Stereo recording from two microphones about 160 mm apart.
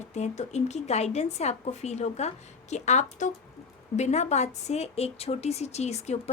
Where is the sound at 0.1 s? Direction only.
45° left (ahead or behind).